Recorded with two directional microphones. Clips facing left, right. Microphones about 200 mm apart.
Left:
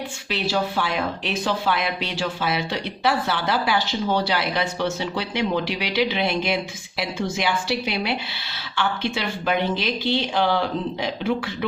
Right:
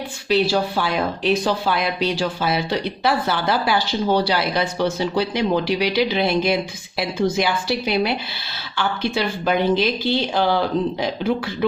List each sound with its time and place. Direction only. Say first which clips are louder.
0.3 s speech: right 6 dB; 35° right (ahead or behind)